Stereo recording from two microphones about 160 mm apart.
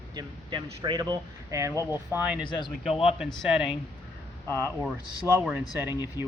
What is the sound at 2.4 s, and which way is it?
Speech, 30° left (ahead or behind).